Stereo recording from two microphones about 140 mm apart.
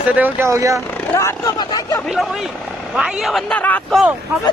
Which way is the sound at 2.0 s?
Centre (ahead or behind).